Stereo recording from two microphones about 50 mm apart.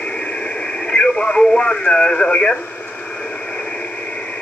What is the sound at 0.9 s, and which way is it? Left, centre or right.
Speech, centre.